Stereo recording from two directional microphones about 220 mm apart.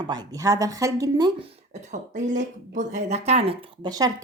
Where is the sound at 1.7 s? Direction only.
30° right (ahead or behind).